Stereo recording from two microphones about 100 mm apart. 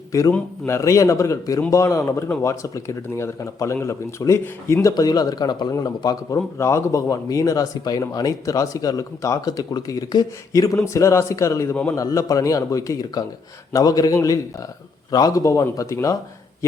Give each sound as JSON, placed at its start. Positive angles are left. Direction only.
{"t": 0.1, "sound": "a man's voice", "side_deg": 35}